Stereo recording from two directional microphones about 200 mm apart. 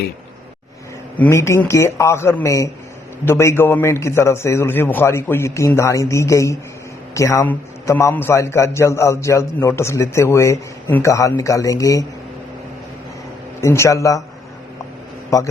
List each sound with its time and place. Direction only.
1.2 s a man's voice: 15° left (ahead or behind)
13.6 s a man's voice: 15° left (ahead or behind)
15.3 s a man's voice: 15° left (ahead or behind)